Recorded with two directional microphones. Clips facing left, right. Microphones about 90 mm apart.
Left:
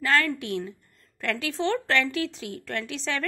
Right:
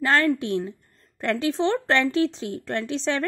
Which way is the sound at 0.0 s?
30° right (ahead or behind).